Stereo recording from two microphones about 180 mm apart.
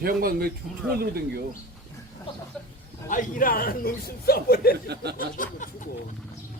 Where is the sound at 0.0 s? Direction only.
55° right (ahead or behind).